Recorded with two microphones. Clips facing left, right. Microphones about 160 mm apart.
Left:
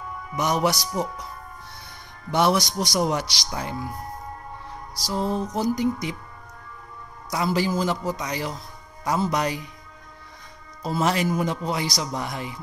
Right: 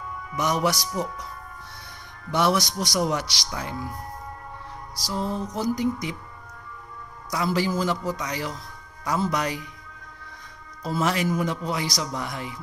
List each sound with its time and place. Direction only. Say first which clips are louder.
0.4 s a man's voice: left 1 dB; 25° left (ahead or behind)
2.3 s a man's voice: left 2 dB; 25° left (ahead or behind)
5.0 s a man's voice: left 3 dB; 25° left (ahead or behind)
7.3 s a man's voice: left 1 dB; 20° left (ahead or behind)
10.8 s a man's voice: left 1 dB; 25° left (ahead or behind)